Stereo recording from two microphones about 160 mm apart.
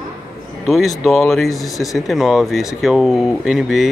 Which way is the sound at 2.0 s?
Centre (ahead or behind).